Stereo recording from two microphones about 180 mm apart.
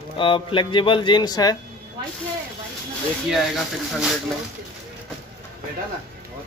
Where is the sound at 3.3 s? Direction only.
Centre (ahead or behind).